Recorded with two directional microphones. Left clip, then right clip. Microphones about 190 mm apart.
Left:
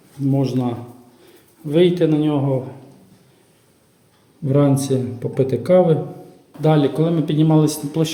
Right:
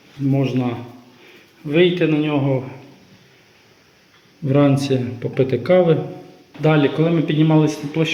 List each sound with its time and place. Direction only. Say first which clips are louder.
0.3 s speech: even; 20° left (ahead or behind)
4.4 s a man's voice: right 1 dB; 20° left (ahead or behind)